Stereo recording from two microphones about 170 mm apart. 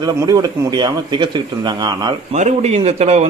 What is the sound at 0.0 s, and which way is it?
A man's voice, 25° right (ahead or behind).